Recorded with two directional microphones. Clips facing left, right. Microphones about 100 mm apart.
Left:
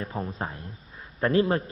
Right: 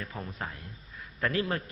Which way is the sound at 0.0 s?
35° left (ahead or behind).